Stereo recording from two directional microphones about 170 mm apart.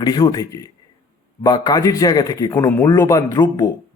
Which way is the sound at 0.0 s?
25° left (ahead or behind).